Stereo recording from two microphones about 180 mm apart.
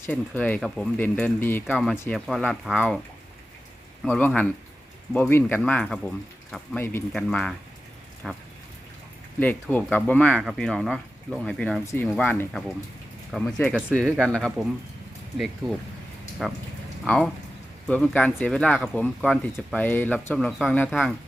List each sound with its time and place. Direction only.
0.0 s speech: 10° left (ahead or behind)
4.0 s speech: centre (ahead or behind)
15.6 s speech: 20° right (ahead or behind)
16.4 s speech: centre (ahead or behind)
19.8 s speech: 10° left (ahead or behind)